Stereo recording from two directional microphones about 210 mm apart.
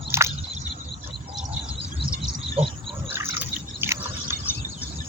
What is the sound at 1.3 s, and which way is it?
Bird, 35° right (ahead or behind).